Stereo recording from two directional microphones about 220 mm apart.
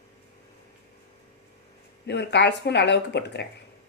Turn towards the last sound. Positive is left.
turn(degrees=50)  # may be behind; listen again after turning